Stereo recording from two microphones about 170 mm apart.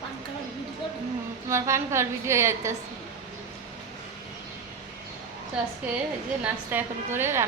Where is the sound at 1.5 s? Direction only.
15° right (ahead or behind).